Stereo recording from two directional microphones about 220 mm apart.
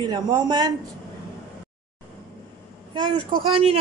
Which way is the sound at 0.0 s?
20° right (ahead or behind).